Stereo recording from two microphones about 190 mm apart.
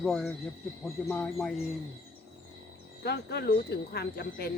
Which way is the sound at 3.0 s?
60° left (ahead or behind).